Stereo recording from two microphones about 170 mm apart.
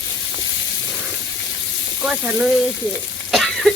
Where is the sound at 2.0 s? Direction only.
5° right (ahead or behind).